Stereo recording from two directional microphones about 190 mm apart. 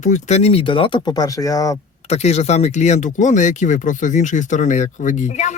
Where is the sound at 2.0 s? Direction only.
35° left (ahead or behind).